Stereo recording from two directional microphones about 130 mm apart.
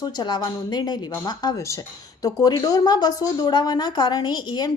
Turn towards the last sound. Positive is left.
turn(degrees=30)  # may be behind; listen again after turning